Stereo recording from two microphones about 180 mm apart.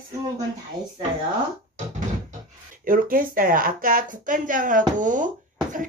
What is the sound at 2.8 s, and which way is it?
Speech, 50° right (ahead or behind).